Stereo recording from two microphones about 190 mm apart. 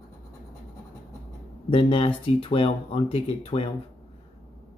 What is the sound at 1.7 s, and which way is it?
Speech, 30° left (ahead or behind).